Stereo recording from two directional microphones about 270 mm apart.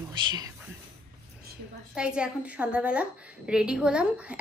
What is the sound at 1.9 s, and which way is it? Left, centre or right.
A woman's voice, centre.